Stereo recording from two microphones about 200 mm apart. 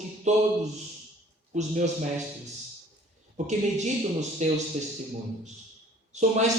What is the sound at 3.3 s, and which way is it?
Speech, 35° right (ahead or behind).